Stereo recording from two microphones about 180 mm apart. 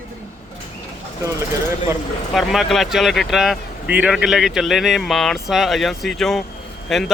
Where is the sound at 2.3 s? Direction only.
Centre (ahead or behind).